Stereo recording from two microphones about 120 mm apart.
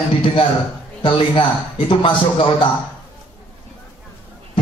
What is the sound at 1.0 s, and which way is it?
Speech, 45° left (ahead or behind).